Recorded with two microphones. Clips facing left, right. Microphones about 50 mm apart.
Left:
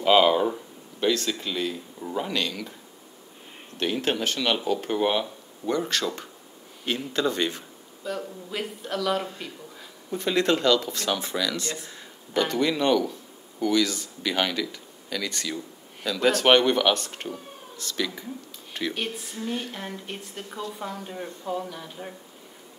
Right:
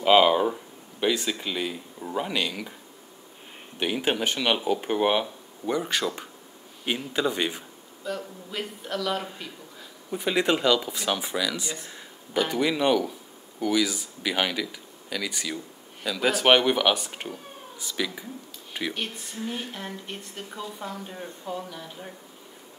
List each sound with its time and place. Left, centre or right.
0.0 s speech: centre
3.7 s speech: centre
8.0 s speech: centre
10.1 s speech: centre
18.7 s a sound: centre
18.9 s speech: centre